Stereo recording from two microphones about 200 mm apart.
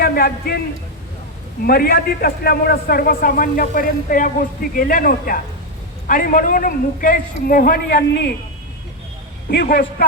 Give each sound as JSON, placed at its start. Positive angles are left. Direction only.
{"t": 0.0, "sound": "a man's voice", "side_deg": 50}
{"t": 1.6, "sound": "a man's voice", "side_deg": 50}
{"t": 9.5, "sound": "a man's voice", "side_deg": 55}